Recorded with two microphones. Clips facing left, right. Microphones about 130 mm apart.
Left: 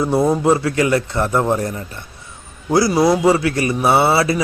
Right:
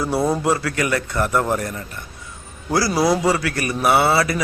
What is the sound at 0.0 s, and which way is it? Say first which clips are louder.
A man's voice: left 4 dB; 20° left (ahead or behind).